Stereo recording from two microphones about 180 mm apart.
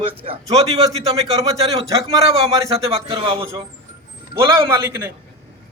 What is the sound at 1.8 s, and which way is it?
Speech, 20° right (ahead or behind).